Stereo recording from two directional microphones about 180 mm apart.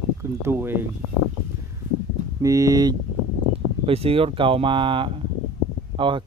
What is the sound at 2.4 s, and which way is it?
Speech, 20° right (ahead or behind).